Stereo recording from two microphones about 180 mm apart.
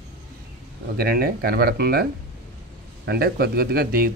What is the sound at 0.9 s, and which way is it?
Speech, 60° right (ahead or behind).